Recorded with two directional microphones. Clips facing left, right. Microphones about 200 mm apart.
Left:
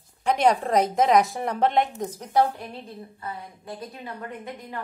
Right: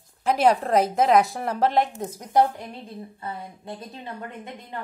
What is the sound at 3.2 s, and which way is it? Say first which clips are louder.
Speech: right 1 dB; 25° right (ahead or behind).